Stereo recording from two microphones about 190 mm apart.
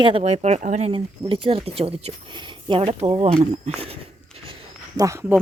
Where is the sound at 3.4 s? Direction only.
35° right (ahead or behind).